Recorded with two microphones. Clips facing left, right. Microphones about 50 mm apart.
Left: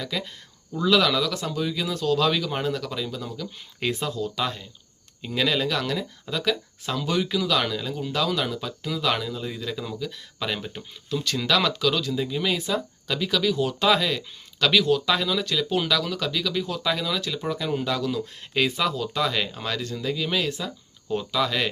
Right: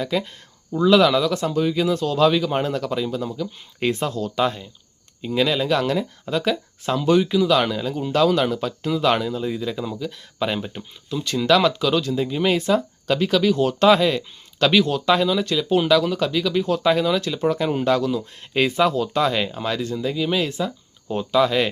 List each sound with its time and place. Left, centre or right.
0.0 s speech: right
2.6 s speech: right
3.2 s speech: right
3.9 s speech: right
4.4 s speech: right
5.2 s speech: centre
5.6 s speech: right
7.2 s speech: centre
9.9 s speech: right
12.5 s speech: right
13.8 s speech: right
20.1 s speech: centre
20.4 s speech: right